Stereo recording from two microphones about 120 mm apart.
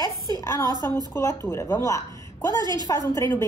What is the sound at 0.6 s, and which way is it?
Speech, 35° right (ahead or behind).